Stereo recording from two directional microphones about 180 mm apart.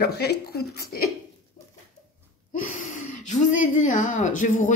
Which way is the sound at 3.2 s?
45° left (ahead or behind).